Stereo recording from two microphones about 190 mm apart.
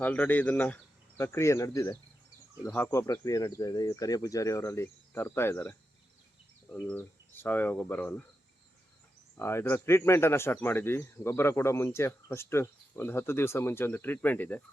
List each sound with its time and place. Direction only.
0.0 s speech: 10° left (ahead or behind)
6.8 s speech: 10° left (ahead or behind)
9.4 s speech: 15° left (ahead or behind)